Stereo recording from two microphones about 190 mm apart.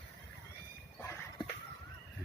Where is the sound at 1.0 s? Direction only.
15° left (ahead or behind).